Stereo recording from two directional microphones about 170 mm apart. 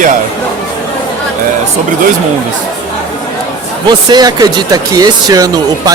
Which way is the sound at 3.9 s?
25° right (ahead or behind).